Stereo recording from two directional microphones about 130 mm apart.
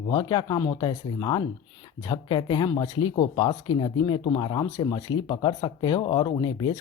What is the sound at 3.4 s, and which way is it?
Speech, 35° left (ahead or behind).